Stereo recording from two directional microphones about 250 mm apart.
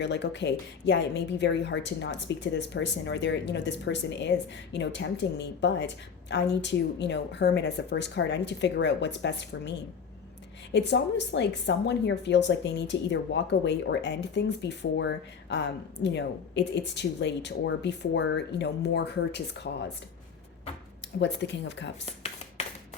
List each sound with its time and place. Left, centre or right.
0.0 s speech: left
21.2 s speech: left
22.0 s a sound: left